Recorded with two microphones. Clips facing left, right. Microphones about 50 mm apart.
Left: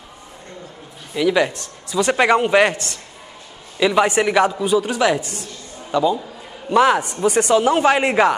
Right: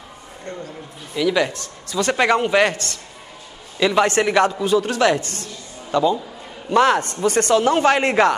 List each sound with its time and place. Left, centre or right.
1.1 s a man's voice: centre
3.8 s a man's voice: centre